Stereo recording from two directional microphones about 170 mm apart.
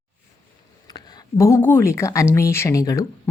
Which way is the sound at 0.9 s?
20° left (ahead or behind).